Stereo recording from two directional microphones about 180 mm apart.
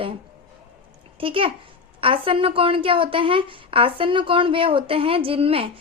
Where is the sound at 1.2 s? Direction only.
30° right (ahead or behind).